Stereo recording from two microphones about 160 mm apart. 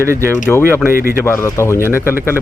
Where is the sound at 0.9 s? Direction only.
65° left (ahead or behind).